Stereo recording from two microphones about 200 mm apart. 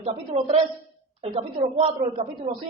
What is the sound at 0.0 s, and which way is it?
A woman's voice, 30° right (ahead or behind).